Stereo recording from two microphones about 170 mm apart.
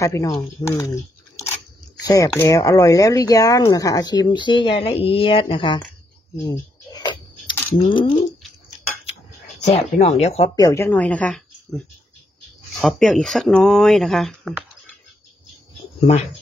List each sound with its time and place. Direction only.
0.0 s speech: 20° left (ahead or behind)
6.3 s a sound: 20° left (ahead or behind)
7.8 s speech: 30° left (ahead or behind)
9.7 s speech: 40° left (ahead or behind)
10.5 s speech: 20° left (ahead or behind); by 14.5 s centre (ahead or behind)